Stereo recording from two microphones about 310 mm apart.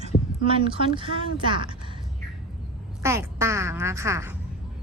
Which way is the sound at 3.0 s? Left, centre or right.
Centre.